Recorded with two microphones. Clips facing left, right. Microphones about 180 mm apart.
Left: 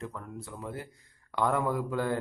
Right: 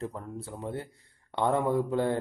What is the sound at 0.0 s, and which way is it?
Speech, 35° right (ahead or behind).